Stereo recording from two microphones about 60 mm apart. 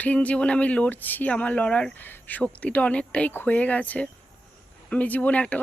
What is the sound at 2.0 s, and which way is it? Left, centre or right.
Speech, left.